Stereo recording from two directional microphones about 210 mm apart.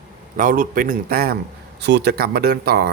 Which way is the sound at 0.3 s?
40° right (ahead or behind).